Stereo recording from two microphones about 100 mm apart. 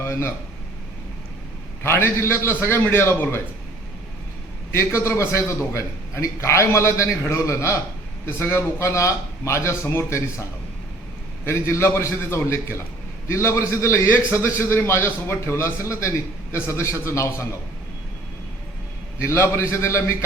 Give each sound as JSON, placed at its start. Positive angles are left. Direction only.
{"t": 0.0, "sound": "a sound", "side_deg": 25}
{"t": 1.8, "sound": "a man's voice", "side_deg": 25}
{"t": 4.7, "sound": "a man's voice", "side_deg": 25}
{"t": 11.4, "sound": "a man's voice", "side_deg": 25}
{"t": 19.2, "sound": "a man's voice", "side_deg": 25}